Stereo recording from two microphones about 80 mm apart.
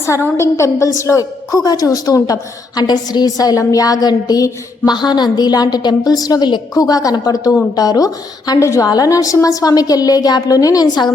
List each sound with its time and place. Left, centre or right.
0.0 s a woman's voice: left
4.9 s a woman's voice: left